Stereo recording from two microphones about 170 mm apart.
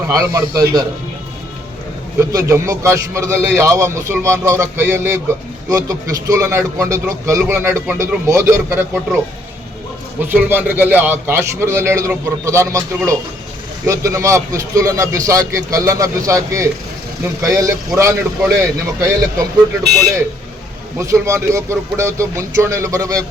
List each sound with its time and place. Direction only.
0.1 s a man's voice: 20° right (ahead or behind)
2.3 s a man's voice: 15° right (ahead or behind)
21.0 s a man's voice: 15° right (ahead or behind)